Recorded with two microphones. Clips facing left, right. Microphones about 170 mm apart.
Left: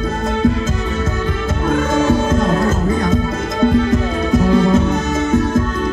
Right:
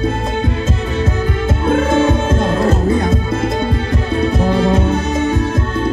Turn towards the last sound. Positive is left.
turn(degrees=-30)  # may be behind; listen again after turning